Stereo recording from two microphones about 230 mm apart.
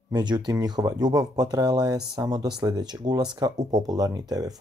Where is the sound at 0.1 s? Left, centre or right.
Centre.